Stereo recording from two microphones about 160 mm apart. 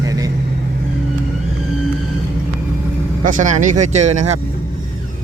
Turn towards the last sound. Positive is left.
turn(degrees=-45)  # may be behind; listen again after turning